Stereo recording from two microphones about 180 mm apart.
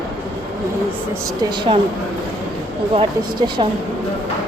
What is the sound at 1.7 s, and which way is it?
Speech, 25° right (ahead or behind).